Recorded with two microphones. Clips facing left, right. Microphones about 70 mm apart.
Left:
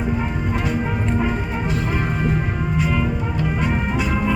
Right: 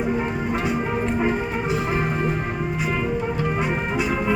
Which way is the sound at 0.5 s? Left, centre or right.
Centre.